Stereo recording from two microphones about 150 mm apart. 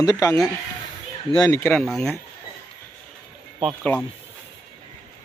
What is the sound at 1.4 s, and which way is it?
Speech, 20° left (ahead or behind).